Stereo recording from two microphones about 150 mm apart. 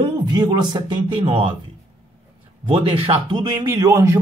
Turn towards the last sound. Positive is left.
turn(degrees=-20)  # may be behind; listen again after turning